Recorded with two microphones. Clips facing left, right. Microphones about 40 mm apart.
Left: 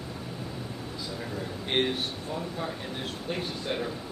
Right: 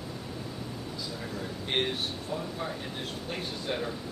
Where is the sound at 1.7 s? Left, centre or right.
Centre.